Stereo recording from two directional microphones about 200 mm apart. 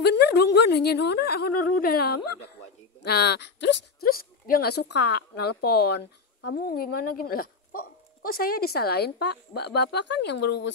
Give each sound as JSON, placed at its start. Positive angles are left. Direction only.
{"t": 0.0, "sound": "speech", "side_deg": 55}